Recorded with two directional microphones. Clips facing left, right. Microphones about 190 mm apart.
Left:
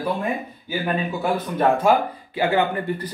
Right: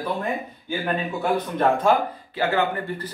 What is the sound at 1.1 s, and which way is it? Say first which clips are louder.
Speech: even; 5° left (ahead or behind).